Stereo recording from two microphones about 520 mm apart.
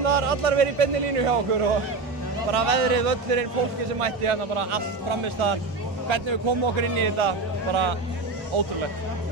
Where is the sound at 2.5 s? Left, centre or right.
Right.